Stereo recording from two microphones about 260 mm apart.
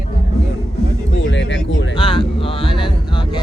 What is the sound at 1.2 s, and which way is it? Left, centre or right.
Speech, left.